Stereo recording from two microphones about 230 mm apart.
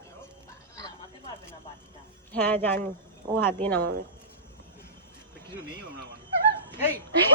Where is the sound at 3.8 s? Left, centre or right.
Right.